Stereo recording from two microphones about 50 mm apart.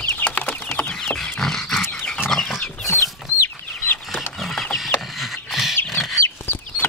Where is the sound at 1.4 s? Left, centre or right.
Centre.